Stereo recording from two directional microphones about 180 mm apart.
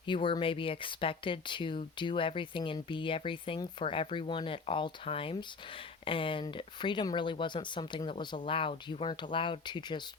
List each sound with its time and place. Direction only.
0.0 s speech: 25° left (ahead or behind)